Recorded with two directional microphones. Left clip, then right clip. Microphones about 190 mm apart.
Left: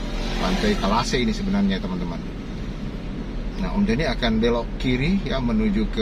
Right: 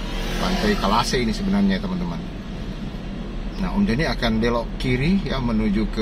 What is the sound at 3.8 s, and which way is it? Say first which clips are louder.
Speech: even; 15° right (ahead or behind).